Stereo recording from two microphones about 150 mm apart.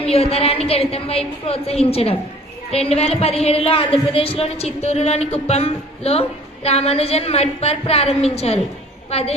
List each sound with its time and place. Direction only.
0.0 s a woman's voice: 40° left (ahead or behind)